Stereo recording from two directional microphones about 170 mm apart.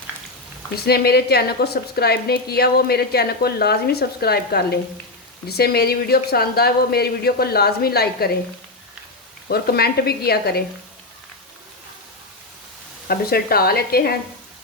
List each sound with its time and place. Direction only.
0.8 s a woman's voice: 70° left (ahead or behind)
9.5 s a woman's voice: 65° left (ahead or behind)
13.1 s speech: 65° left (ahead or behind)